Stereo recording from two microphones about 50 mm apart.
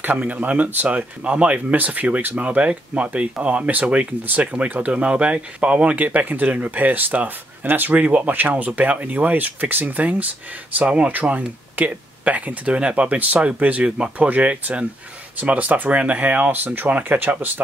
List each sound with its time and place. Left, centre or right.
0.0 s speech: right
5.9 s speech: right
13.8 s speech: centre
14.1 s speech: right
16.6 s speech: right